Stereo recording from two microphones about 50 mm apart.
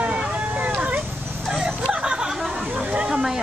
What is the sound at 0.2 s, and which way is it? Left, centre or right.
Vehicle, right.